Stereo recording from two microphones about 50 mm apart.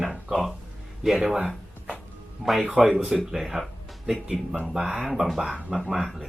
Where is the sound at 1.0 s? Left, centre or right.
Centre.